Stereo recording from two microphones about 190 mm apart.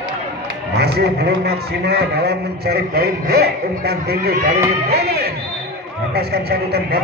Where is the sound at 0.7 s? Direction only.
55° right (ahead or behind).